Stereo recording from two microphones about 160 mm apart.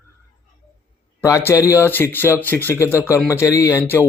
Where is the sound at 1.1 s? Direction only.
15° left (ahead or behind).